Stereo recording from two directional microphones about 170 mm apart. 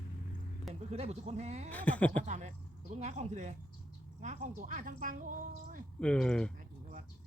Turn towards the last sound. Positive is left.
turn(degrees=5)  # may be behind; listen again after turning